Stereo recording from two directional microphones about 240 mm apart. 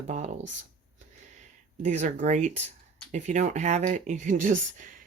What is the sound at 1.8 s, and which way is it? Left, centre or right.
Speech, right.